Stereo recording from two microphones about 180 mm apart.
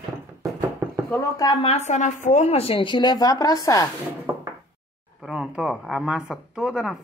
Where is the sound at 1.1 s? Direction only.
20° left (ahead or behind).